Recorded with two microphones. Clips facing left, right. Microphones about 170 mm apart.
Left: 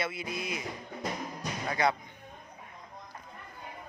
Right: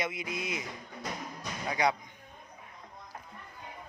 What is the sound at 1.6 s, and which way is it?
Speech, 10° right (ahead or behind).